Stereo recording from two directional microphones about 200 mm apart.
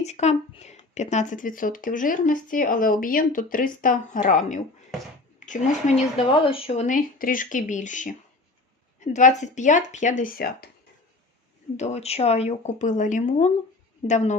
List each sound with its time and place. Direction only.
0.0 s speech: 35° left (ahead or behind)
6.8 s speech: 40° left (ahead or behind)
11.8 s speech: 30° left (ahead or behind)